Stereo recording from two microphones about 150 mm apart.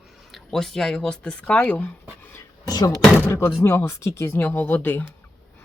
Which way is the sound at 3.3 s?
15° left (ahead or behind).